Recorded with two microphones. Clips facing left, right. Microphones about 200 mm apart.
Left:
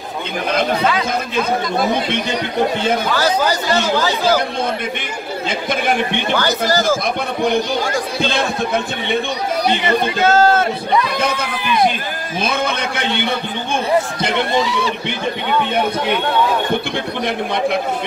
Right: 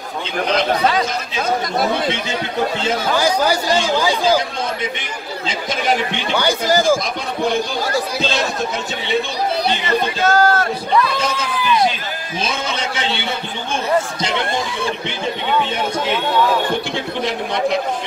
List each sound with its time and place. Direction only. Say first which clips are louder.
2.0 s a man's voice: left 1 dB; 60° left (ahead or behind)
3.2 s speech: even; 10° right (ahead or behind)
5.5 s a man's voice: left 1 dB; 55° left (ahead or behind)
6.3 s speech: right 2 dB; 15° right (ahead or behind)
8.2 s a man's voice: left 1 dB; 55° left (ahead or behind)
9.8 s speech: left 2 dB; 25° left (ahead or behind)
11.1 s a man's voice: left 1 dB; 55° left (ahead or behind)
14.5 s speech: left 4 dB; 50° right (ahead or behind)
16.9 s a man's voice: left 1 dB; 55° left (ahead or behind)